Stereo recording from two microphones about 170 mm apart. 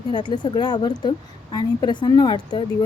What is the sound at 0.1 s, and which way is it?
Speech, 25° left (ahead or behind).